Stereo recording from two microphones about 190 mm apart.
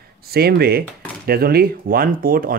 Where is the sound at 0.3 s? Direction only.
55° right (ahead or behind).